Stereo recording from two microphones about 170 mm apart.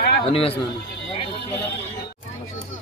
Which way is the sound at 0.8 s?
85° left.